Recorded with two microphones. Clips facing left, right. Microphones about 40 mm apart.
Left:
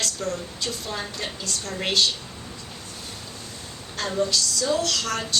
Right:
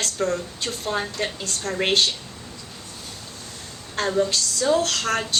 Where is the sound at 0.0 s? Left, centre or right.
Right.